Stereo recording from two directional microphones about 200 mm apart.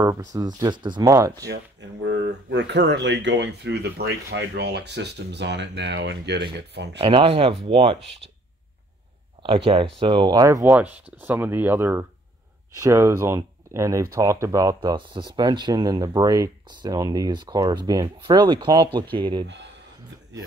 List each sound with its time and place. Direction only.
0.0 s speech: 15° right (ahead or behind)
1.5 s speech: 60° right (ahead or behind)
7.0 s speech: 25° right (ahead or behind)
9.9 s speech: 25° right (ahead or behind)
19.4 s speech: 60° right (ahead or behind)